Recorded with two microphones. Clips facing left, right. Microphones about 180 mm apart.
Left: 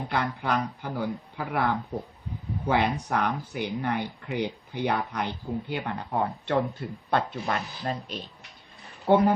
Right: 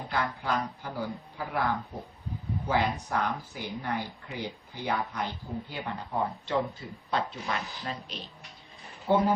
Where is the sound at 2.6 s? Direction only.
60° left (ahead or behind).